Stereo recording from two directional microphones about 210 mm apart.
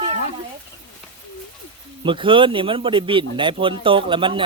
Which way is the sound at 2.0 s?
25° right (ahead or behind).